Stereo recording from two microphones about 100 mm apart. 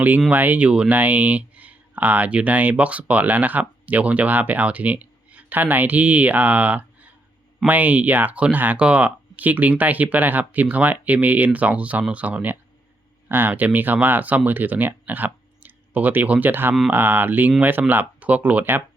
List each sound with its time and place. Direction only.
0.3 s speech: 15° right (ahead or behind)